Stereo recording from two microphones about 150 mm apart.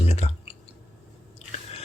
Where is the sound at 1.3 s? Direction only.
45° left (ahead or behind).